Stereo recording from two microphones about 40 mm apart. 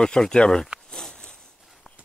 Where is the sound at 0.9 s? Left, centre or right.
Centre.